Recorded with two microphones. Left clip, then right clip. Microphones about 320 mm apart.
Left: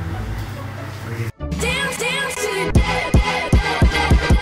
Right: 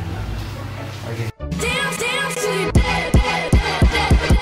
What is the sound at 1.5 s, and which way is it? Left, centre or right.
Music, centre.